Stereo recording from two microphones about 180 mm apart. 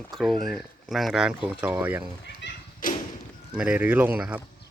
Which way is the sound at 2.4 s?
75° left (ahead or behind).